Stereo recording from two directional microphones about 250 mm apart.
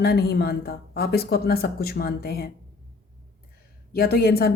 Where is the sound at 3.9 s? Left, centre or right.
Left.